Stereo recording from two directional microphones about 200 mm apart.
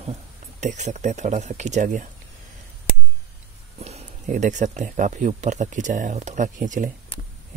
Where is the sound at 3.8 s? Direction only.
35° right (ahead or behind).